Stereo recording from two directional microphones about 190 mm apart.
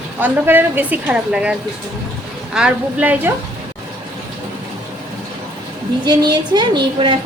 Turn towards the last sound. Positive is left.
turn(degrees=-25)  # may be behind; listen again after turning